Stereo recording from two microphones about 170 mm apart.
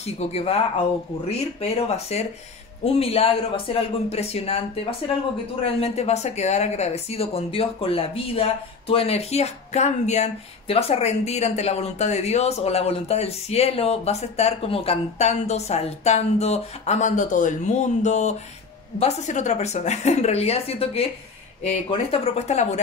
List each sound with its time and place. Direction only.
0.0 s speech: 40° left (ahead or behind)
22.1 s speech: 40° left (ahead or behind)